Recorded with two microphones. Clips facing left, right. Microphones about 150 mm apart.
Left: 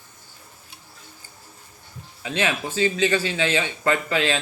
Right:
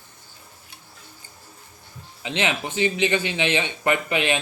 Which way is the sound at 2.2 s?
20° right (ahead or behind).